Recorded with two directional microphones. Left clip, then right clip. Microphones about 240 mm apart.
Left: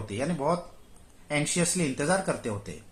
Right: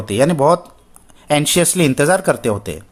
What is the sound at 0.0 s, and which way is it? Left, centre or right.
Speech, right.